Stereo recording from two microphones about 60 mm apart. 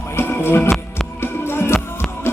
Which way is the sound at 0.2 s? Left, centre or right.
Left.